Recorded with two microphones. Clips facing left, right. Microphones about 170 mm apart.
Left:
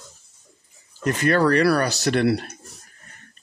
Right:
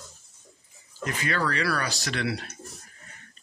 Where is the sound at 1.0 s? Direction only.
60° left (ahead or behind).